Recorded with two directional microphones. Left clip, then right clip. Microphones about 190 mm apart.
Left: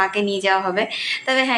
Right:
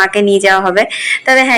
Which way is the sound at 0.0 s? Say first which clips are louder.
Right 10 dB; 35° right (ahead or behind).